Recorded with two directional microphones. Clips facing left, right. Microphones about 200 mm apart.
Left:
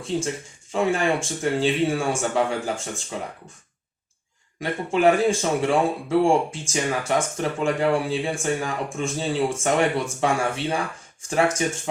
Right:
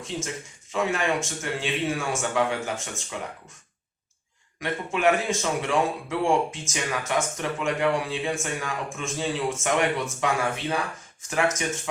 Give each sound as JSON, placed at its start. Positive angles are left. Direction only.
{"t": 0.7, "sound": "speech", "side_deg": 30}
{"t": 4.6, "sound": "speech", "side_deg": 30}